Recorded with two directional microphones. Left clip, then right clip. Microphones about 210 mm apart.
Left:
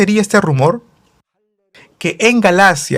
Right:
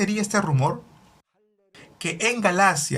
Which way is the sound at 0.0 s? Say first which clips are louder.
Left 12 dB; 45° left (ahead or behind).